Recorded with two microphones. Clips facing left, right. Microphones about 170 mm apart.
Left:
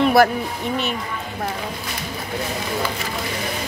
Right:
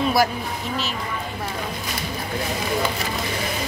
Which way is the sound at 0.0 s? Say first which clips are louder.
Left 5 dB; 60° left (ahead or behind).